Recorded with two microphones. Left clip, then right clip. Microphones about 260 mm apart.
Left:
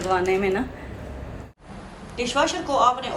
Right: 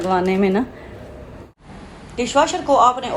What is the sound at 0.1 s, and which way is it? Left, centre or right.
Speech, right.